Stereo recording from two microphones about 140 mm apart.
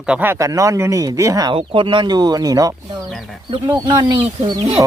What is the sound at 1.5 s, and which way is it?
Speech, 35° right (ahead or behind).